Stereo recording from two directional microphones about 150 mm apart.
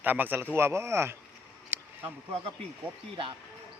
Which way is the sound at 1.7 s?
15° right (ahead or behind).